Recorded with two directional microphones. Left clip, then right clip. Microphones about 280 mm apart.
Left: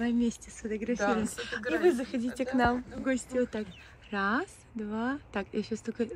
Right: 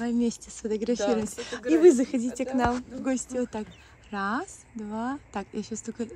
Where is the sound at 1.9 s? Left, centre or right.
Centre.